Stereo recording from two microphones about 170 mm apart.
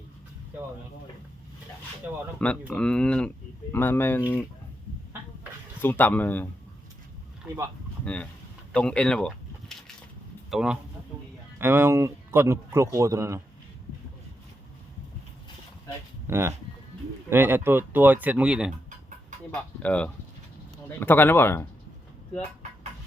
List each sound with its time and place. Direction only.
2.0 s a man's voice: 10° right (ahead or behind)
2.4 s speech: 5° left (ahead or behind)
5.8 s speech: 10° left (ahead or behind)
8.0 s a man's voice: 5° left (ahead or behind); by 13.4 s 15° right (ahead or behind)
16.2 s a man's voice: 15° right (ahead or behind)
19.8 s speech: 10° left (ahead or behind)